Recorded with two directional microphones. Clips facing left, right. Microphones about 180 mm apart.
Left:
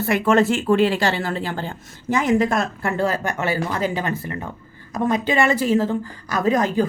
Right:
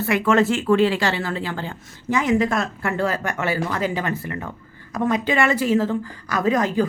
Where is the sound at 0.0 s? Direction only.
45° left (ahead or behind).